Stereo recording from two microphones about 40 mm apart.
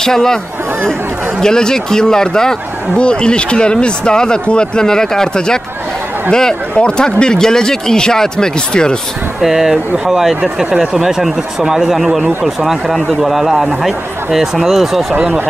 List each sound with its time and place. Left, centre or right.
0.0 s speech: centre
1.4 s speech: centre
6.7 s speech: left
9.4 s speech: centre
10.4 s speech: right; by 15.1 s centre